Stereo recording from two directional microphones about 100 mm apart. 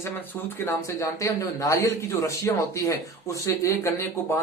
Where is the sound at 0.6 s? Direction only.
25° left (ahead or behind).